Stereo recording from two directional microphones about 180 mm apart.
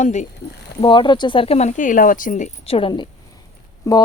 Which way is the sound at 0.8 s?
25° left (ahead or behind).